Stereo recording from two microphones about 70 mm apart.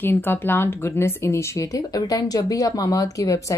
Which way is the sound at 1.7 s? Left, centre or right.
Left.